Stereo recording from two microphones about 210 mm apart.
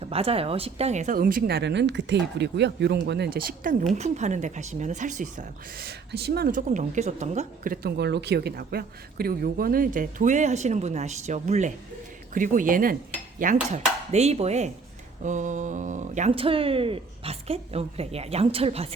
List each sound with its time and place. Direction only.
0.0 s speech: 25° right (ahead or behind)